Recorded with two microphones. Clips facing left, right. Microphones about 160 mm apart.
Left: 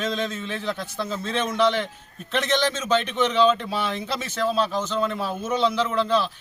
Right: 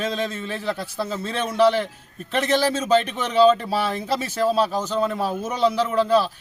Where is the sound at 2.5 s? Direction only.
35° right (ahead or behind).